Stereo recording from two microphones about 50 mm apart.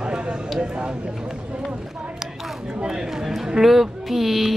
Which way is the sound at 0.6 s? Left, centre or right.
Right.